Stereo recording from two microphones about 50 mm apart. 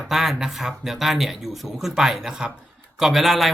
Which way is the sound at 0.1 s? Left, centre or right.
Centre.